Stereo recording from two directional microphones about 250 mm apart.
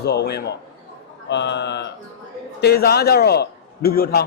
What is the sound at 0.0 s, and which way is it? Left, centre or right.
Speech, left.